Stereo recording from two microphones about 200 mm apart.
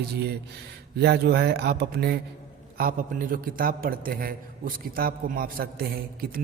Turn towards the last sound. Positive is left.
turn(degrees=-50)  # may be behind; listen again after turning